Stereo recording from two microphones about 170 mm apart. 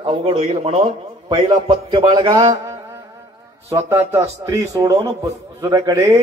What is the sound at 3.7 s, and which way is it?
A man's voice, 15° right (ahead or behind).